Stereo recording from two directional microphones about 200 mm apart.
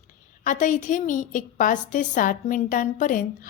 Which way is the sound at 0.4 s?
40° left (ahead or behind).